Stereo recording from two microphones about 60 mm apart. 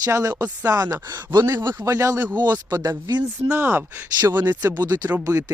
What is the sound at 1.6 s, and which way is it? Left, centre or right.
A man's voice, right.